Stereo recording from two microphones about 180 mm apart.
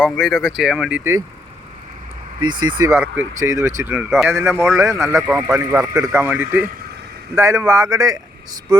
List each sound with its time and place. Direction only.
0.0 s speech: centre (ahead or behind)
2.4 s a man's voice: 25° right (ahead or behind); by 4.4 s 5° right (ahead or behind)
4.8 s a man's voice: 15° right (ahead or behind)